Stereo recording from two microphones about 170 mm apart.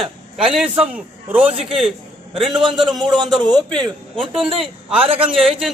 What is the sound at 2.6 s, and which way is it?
Speech, 30° right (ahead or behind).